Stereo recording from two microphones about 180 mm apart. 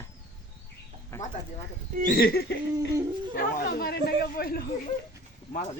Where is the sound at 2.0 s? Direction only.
55° left (ahead or behind).